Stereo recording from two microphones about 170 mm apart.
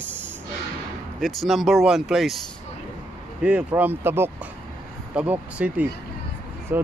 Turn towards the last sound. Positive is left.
turn(degrees=-10)  # may be behind; listen again after turning